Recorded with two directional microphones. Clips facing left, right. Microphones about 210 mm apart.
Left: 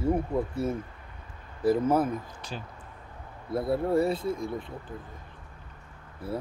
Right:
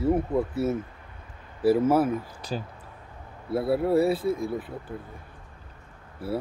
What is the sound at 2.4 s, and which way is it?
Speech, 35° right (ahead or behind).